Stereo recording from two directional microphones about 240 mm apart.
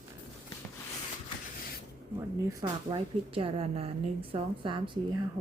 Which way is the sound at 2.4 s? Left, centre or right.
Right.